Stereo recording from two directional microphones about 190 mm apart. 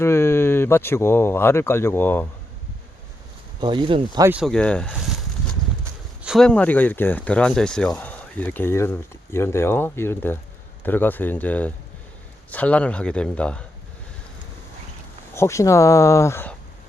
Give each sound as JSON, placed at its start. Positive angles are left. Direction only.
{"t": 0.0, "sound": "speech", "side_deg": 15}
{"t": 3.6, "sound": "speech", "side_deg": -25}
{"t": 4.2, "sound": "speech", "side_deg": -10}
{"t": 4.4, "sound": "speech", "side_deg": 5}
{"t": 6.2, "sound": "speech", "side_deg": 0}
{"t": 15.4, "sound": "speech", "side_deg": 15}